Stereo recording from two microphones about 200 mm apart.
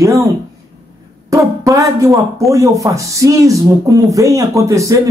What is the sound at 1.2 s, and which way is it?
Speech, 15° right (ahead or behind).